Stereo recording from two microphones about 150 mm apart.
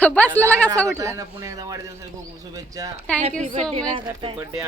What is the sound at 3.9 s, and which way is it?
Speech, 35° right (ahead or behind).